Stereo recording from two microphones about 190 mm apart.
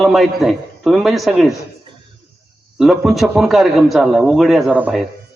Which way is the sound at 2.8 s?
Centre (ahead or behind).